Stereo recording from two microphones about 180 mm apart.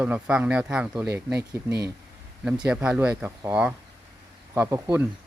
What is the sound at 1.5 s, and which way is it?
Speech, 15° right (ahead or behind).